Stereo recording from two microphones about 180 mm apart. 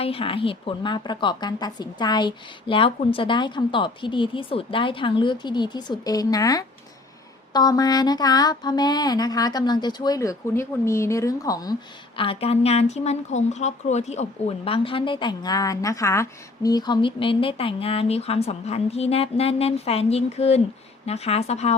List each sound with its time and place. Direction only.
0.0 s a woman's voice: 30° left (ahead or behind)
12.1 s speech: 30° left (ahead or behind)